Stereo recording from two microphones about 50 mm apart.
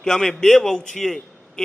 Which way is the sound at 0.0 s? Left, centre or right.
Centre.